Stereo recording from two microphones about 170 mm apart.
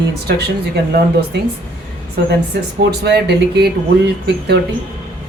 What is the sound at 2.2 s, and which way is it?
Speech, 70° right (ahead or behind).